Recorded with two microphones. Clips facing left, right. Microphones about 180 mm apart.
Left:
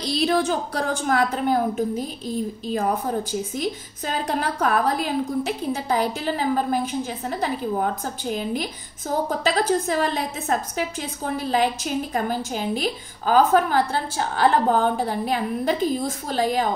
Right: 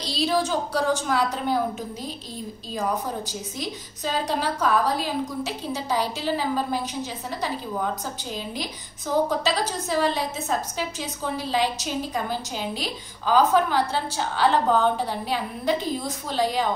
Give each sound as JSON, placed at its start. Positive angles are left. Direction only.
{"t": 0.0, "sound": "a woman's voice", "side_deg": 60}